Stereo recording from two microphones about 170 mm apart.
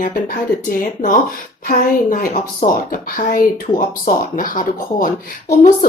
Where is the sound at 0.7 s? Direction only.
50° left (ahead or behind).